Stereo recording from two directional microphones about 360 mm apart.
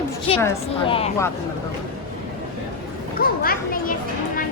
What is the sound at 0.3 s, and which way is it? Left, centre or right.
Speech, centre.